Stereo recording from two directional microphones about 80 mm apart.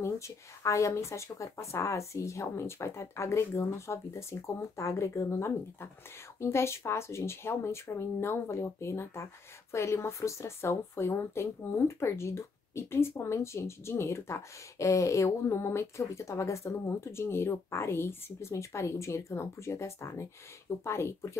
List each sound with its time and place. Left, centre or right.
0.0 s speech: left